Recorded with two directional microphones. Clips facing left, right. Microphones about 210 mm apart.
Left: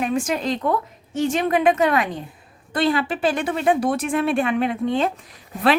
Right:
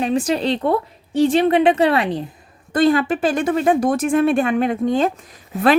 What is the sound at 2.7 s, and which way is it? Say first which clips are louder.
A woman's voice: right 5 dB; 45° right (ahead or behind).